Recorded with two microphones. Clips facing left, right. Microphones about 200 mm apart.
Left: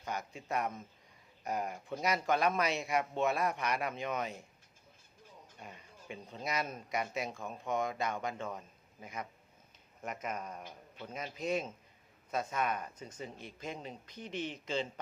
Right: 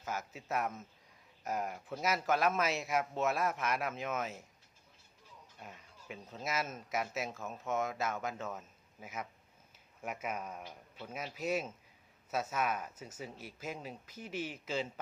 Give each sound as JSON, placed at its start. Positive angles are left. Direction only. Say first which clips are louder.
{"t": 0.0, "sound": "speech", "louder": "left 1 dB", "side_deg": -5}
{"t": 5.5, "sound": "speech", "louder": "even", "side_deg": 0}